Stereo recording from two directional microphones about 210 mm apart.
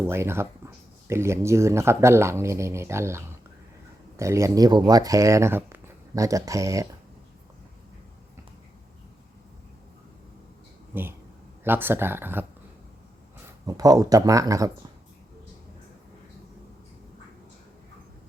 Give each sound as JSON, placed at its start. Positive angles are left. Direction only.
{"t": 0.1, "sound": "speech", "side_deg": -10}
{"t": 10.9, "sound": "speech", "side_deg": -10}
{"t": 13.7, "sound": "speech", "side_deg": -15}